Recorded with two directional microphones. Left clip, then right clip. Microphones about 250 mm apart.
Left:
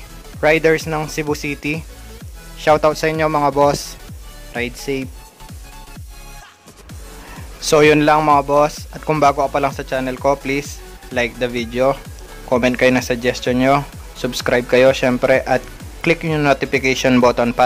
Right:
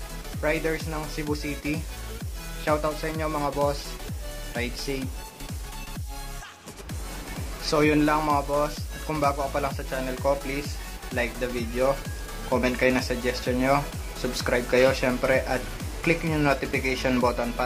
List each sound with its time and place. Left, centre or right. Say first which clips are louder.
0.4 s speech: left 13 dB; left
7.7 s speech: left 11 dB; left